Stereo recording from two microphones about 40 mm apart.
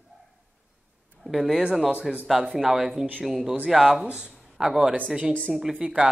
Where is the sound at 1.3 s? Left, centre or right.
Centre.